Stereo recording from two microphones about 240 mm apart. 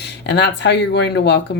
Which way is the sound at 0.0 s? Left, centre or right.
Left.